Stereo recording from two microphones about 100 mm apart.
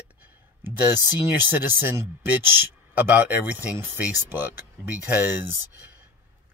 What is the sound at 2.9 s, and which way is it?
Speech, 20° right (ahead or behind).